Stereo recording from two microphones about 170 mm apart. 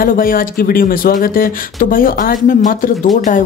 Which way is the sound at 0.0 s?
55° left (ahead or behind).